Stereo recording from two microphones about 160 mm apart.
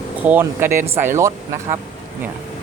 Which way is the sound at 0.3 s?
15° right (ahead or behind).